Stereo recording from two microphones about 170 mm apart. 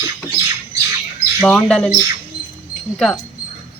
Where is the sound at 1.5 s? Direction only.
5° left (ahead or behind).